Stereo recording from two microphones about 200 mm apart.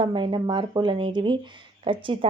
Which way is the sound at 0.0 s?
25° right (ahead or behind).